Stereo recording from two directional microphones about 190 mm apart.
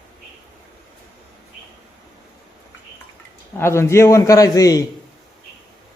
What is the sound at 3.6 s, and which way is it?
A man's voice, 15° left (ahead or behind).